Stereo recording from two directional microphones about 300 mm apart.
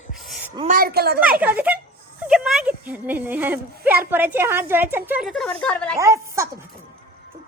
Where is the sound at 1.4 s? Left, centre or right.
Centre.